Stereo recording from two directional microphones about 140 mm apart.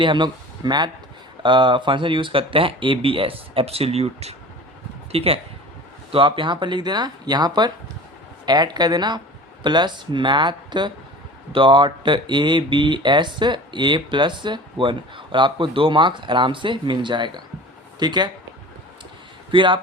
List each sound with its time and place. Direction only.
0.0 s speech: 35° right (ahead or behind)
19.5 s speech: 35° right (ahead or behind)